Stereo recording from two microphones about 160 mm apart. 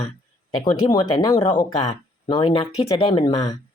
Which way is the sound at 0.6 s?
25° left (ahead or behind).